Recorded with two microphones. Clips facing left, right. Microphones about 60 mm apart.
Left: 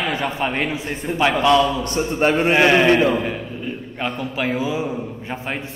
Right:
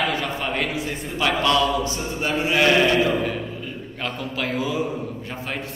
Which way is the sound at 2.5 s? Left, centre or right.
Left.